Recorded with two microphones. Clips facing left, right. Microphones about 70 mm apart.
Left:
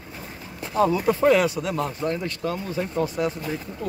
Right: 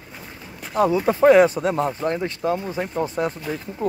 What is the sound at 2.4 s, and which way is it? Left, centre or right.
Speech, centre.